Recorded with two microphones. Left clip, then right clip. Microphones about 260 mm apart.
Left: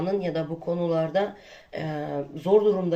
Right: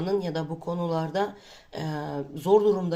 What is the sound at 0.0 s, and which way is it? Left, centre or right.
Speech, right.